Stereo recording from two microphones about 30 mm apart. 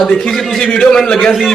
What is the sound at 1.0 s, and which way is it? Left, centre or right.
Speech, left.